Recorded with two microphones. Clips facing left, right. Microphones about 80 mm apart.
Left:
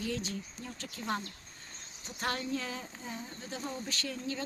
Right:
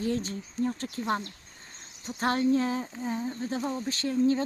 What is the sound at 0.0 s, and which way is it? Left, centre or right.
Speech, right.